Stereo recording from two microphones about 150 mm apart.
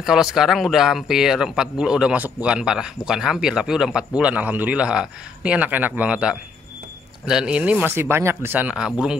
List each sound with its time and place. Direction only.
0.0 s a man's voice: 5° right (ahead or behind)